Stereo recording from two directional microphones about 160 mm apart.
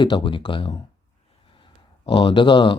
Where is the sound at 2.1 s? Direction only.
35° left (ahead or behind).